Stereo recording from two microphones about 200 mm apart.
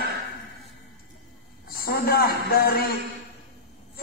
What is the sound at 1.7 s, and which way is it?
A man's voice, 50° left (ahead or behind).